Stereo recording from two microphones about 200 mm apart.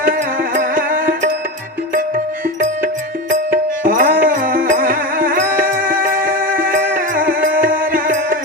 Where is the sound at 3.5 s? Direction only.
45° right (ahead or behind).